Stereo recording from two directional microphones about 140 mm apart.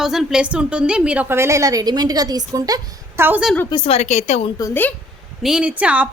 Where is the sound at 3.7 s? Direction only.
45° left (ahead or behind).